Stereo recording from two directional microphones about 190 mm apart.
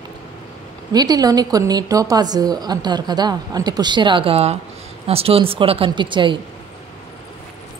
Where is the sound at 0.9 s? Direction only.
20° right (ahead or behind).